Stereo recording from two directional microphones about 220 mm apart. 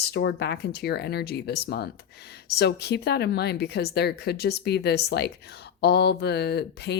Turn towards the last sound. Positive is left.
turn(degrees=50)  # may be behind; listen again after turning